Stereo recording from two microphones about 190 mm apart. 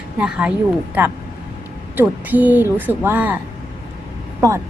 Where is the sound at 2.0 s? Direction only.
10° right (ahead or behind).